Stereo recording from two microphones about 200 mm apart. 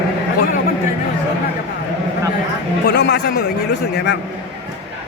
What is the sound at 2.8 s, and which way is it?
Speech, 60° left (ahead or behind).